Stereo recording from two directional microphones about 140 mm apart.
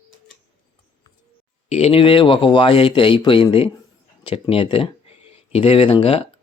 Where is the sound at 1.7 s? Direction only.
45° left (ahead or behind).